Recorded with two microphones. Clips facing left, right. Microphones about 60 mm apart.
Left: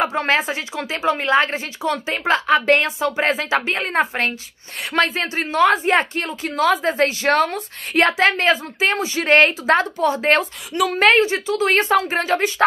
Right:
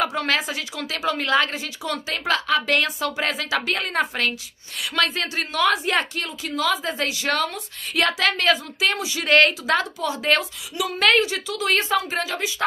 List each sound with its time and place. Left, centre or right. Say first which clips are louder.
0.0 s a woman's voice: left 4 dB; left